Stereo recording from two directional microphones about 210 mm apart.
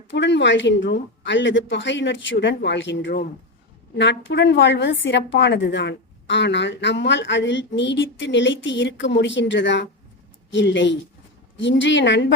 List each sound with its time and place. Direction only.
0.1 s a woman's voice: 60° left (ahead or behind)